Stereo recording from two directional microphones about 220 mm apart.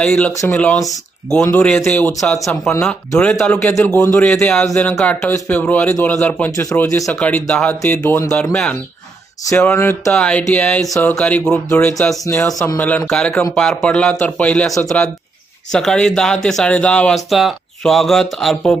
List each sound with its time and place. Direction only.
0.0 s a man's voice: 5° left (ahead or behind)
9.5 s a man's voice: 10° left (ahead or behind)
10.8 s a man's voice: 15° left (ahead or behind)